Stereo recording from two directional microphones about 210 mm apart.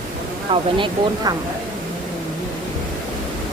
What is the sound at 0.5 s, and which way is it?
Speech, 25° right (ahead or behind).